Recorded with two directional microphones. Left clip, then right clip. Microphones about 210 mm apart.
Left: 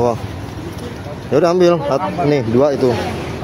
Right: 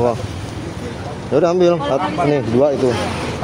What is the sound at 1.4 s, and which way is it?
Speech, 10° left (ahead or behind).